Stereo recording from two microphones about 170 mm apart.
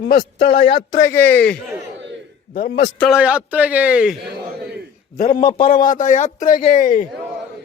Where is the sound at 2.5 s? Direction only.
60° left (ahead or behind).